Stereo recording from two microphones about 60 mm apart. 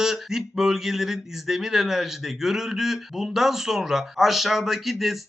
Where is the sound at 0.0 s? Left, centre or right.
Centre.